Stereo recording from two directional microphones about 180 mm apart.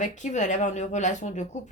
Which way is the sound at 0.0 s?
40° left (ahead or behind).